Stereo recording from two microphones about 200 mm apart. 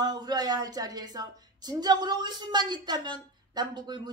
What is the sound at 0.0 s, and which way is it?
A woman's voice, 20° right (ahead or behind).